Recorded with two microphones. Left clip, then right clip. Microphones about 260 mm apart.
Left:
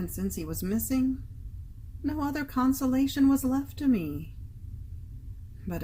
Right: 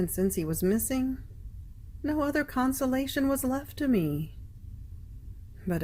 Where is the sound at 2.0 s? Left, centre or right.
Right.